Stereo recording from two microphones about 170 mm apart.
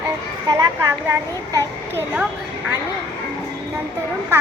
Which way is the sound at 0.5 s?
15° right (ahead or behind).